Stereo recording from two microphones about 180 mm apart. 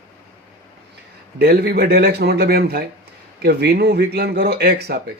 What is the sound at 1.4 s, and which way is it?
Speech, 55° right (ahead or behind).